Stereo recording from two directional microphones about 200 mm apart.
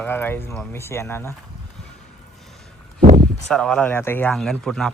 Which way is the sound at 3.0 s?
45° right (ahead or behind).